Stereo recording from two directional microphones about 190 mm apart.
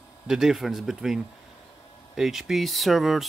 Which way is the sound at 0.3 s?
Centre (ahead or behind).